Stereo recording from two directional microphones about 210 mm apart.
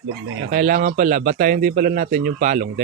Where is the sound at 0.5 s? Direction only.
40° right (ahead or behind).